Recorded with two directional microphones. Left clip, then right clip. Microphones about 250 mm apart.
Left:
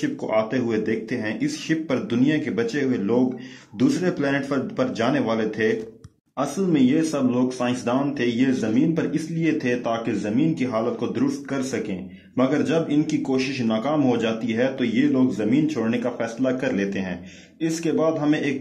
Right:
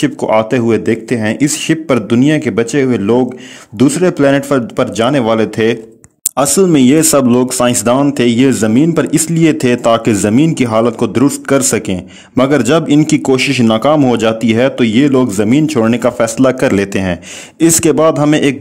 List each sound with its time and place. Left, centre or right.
0.0 s speech: right